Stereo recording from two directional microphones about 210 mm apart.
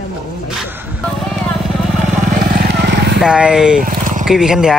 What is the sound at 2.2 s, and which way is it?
Vehicle, 40° right (ahead or behind).